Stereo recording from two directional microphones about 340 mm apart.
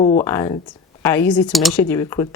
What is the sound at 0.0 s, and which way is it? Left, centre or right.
A woman's voice, centre.